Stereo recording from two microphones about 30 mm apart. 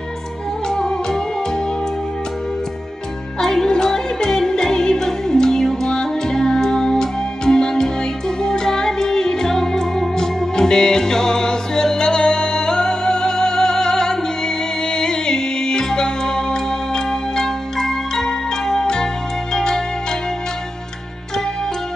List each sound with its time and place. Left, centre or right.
0.7 s music: left
3.3 s music: centre